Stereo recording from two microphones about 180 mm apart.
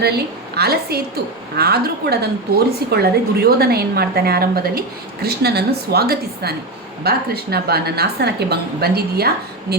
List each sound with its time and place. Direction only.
0.0 s a woman's voice: 65° right (ahead or behind)